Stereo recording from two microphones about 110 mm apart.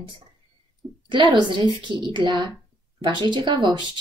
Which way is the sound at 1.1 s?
45° right (ahead or behind).